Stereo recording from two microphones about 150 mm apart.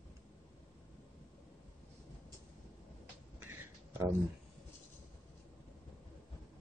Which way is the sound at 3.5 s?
15° right (ahead or behind).